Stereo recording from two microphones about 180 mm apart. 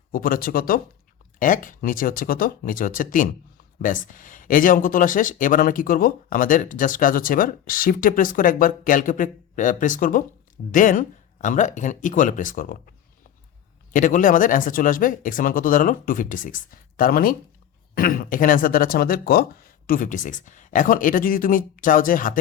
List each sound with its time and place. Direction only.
0.1 s speech: 50° left (ahead or behind)
13.9 s speech: 45° left (ahead or behind)